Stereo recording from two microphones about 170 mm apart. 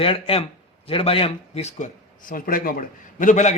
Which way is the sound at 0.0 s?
35° left (ahead or behind).